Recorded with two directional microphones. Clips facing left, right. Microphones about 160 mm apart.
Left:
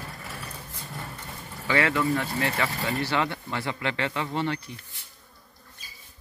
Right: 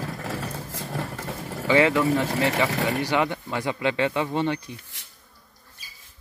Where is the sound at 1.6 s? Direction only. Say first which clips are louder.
Right 5 dB; 20° right (ahead or behind).